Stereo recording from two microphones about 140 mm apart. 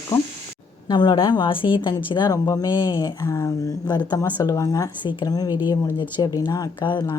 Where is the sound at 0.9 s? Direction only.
35° left (ahead or behind).